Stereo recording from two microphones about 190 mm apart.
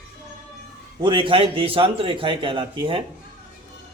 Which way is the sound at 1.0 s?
25° right (ahead or behind).